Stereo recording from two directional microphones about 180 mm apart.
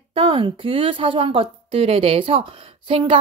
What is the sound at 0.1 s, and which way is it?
Speech, 30° right (ahead or behind).